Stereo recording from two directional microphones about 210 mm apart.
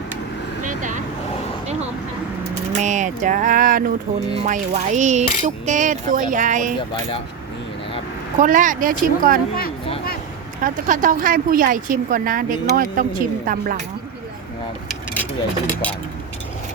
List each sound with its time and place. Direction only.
0.6 s vehicle: 35° right (ahead or behind)
2.7 s speech: 35° right (ahead or behind)
8.4 s speech: 40° right (ahead or behind)
10.6 s speech: 40° right (ahead or behind)